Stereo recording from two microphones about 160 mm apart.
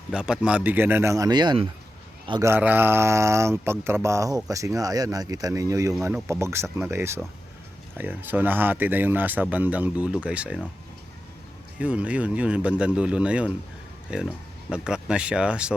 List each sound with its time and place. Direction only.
0.1 s speech: 5° right (ahead or behind); by 1.6 s 25° right (ahead or behind)
2.4 s speech: 15° right (ahead or behind)
11.8 s speech: 5° right (ahead or behind)